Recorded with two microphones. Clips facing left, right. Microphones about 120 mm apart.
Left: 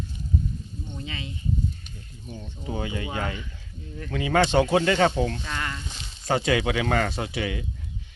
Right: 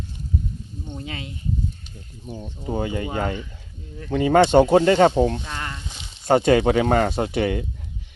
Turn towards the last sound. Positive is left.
turn(degrees=-45)  # may be behind; listen again after turning